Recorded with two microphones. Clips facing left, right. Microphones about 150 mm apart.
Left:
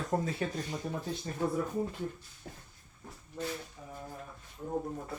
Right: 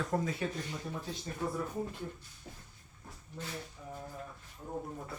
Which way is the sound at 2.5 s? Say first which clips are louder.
Left 3 dB; 60° left (ahead or behind).